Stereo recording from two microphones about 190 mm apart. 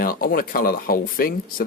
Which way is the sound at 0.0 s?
50° left (ahead or behind).